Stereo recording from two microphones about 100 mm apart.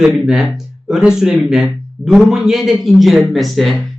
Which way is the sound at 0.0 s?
5° right (ahead or behind).